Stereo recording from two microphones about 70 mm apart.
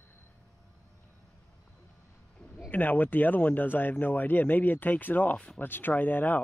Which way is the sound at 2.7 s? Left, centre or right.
Left.